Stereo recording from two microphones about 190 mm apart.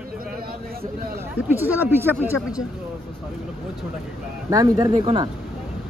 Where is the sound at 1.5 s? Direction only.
10° right (ahead or behind).